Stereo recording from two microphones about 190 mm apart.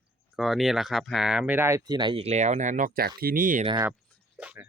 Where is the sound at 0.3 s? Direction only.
Centre (ahead or behind); by 3.7 s 45° right (ahead or behind).